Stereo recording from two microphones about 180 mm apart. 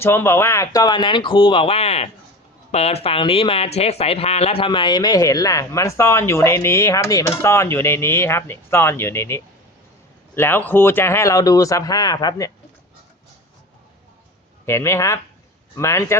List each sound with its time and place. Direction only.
0.0 s speech: 15° left (ahead or behind)
14.7 s speech: 15° left (ahead or behind)